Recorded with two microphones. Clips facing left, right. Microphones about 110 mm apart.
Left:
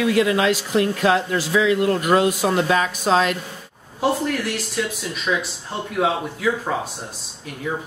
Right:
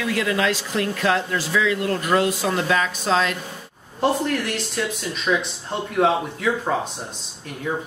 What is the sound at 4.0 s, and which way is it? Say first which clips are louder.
Speech: even; centre (ahead or behind).